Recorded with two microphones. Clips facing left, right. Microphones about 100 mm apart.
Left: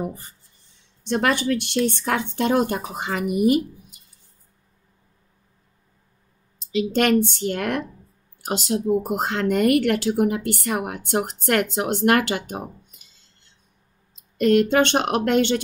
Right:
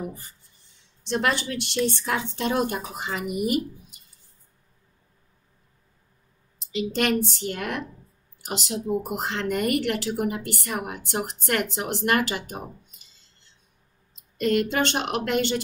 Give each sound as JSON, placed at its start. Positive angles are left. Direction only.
{"t": 0.0, "sound": "speech", "side_deg": 45}
{"t": 6.8, "sound": "speech", "side_deg": 50}
{"t": 8.5, "sound": "speech", "side_deg": 40}
{"t": 14.4, "sound": "speech", "side_deg": 50}